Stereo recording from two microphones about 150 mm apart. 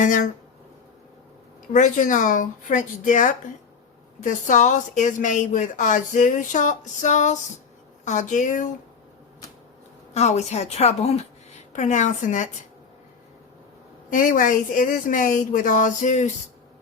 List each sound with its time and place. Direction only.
0.0 s a woman's voice: 60° left (ahead or behind)
1.7 s a woman's voice: 60° left (ahead or behind)
10.2 s a woman's voice: 45° left (ahead or behind)
14.1 s a woman's voice: 65° left (ahead or behind)